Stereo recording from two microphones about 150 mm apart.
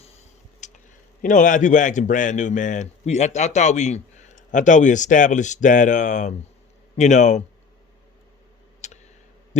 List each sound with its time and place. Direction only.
0.6 s a sound: 55° left (ahead or behind)
1.2 s a man's voice: 60° left (ahead or behind)
8.8 s tick: 50° left (ahead or behind)